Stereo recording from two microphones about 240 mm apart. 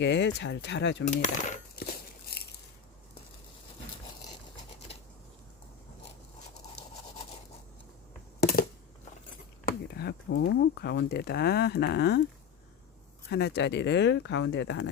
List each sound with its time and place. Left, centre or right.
0.0 s speech: left
1.0 s coin: left
8.4 s a sound: left
9.6 s speech: left
13.3 s speech: left